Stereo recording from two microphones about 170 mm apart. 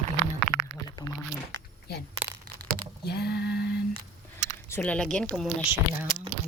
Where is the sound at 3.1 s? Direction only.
70° left (ahead or behind).